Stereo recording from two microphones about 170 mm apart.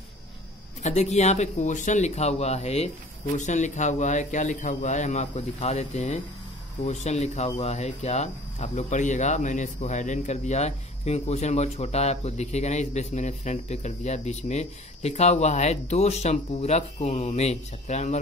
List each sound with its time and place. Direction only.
0.8 s speech: 40° left (ahead or behind)